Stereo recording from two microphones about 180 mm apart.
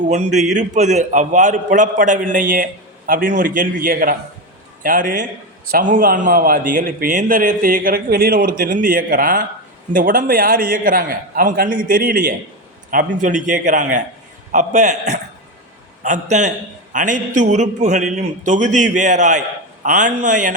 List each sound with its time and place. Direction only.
0.1 s a man's voice: 40° right (ahead or behind)
16.0 s a man's voice: 40° right (ahead or behind)